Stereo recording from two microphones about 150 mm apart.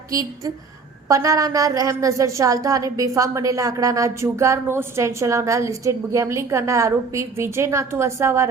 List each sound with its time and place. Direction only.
0.1 s a woman's voice: 25° right (ahead or behind)